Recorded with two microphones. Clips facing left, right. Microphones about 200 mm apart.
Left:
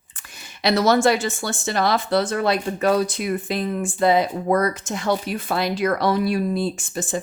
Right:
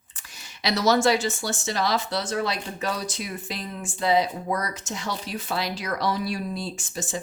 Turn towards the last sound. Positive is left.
turn(degrees=55)  # may be behind; listen again after turning